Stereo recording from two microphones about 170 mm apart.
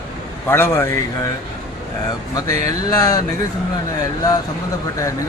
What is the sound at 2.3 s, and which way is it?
Speech, 20° left (ahead or behind).